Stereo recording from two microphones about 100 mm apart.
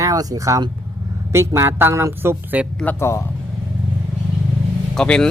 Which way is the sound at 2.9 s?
25° left (ahead or behind).